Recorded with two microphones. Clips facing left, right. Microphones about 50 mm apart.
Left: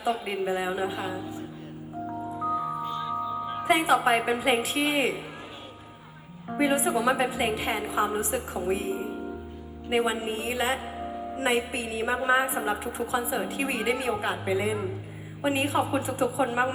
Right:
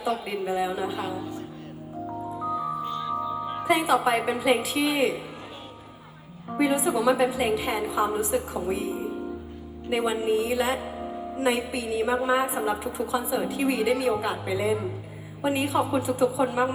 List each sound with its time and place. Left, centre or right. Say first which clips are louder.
0.3 s a woman's voice: right 1 dB; left; by 1.5 s centre
2.4 s music: even; centre
3.7 s a woman's voice: even; left
6.6 s a woman's voice: right 1 dB; left